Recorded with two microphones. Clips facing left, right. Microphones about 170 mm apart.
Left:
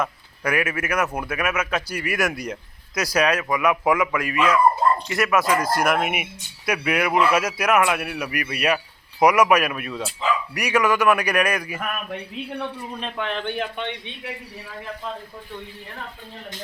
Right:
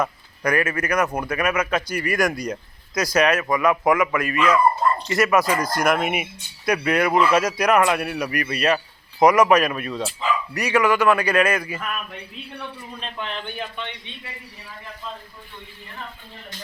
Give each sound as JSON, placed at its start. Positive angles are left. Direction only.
{"t": 0.0, "sound": "speech", "side_deg": 5}
{"t": 11.8, "sound": "a man's voice", "side_deg": 55}